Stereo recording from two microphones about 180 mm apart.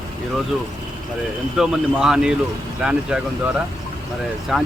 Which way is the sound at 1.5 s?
5° right (ahead or behind).